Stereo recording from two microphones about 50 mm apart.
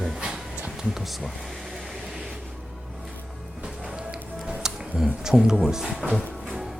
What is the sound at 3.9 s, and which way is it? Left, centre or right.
Music, right.